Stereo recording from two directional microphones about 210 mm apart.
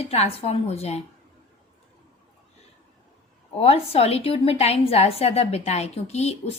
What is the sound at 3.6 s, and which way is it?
Speech, 30° left (ahead or behind).